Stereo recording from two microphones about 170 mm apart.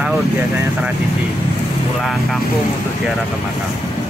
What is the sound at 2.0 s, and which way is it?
Speech, centre (ahead or behind).